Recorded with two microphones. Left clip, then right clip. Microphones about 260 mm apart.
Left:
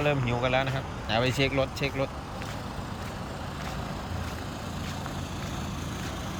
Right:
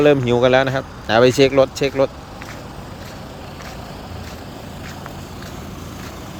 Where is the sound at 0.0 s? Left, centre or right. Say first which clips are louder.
Right 14 dB; right.